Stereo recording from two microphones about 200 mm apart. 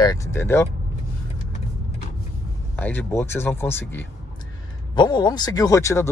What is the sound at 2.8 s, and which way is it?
Speech, 10° left (ahead or behind).